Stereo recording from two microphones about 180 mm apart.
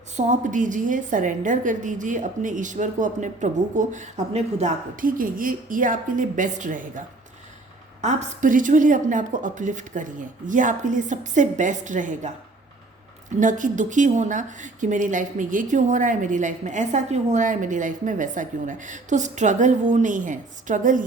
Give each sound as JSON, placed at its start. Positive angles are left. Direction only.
{"t": 0.2, "sound": "speech", "side_deg": -45}
{"t": 8.0, "sound": "speech", "side_deg": -45}
{"t": 13.4, "sound": "speech", "side_deg": -45}